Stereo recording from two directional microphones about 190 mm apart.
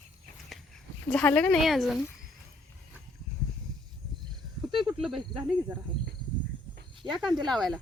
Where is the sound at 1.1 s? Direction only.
5° left (ahead or behind).